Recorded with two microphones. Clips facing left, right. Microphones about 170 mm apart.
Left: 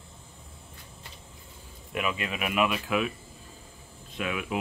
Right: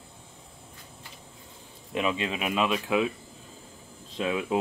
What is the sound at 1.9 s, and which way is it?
Speech, 25° right (ahead or behind).